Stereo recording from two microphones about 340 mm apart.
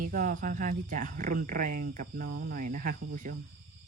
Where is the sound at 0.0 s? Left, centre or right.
Right.